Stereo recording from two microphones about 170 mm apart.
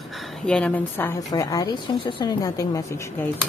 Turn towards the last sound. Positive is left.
turn(degrees=15)  # may be behind; listen again after turning